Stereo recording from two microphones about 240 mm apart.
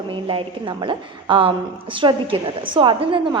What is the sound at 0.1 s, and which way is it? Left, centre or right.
A woman's voice, right.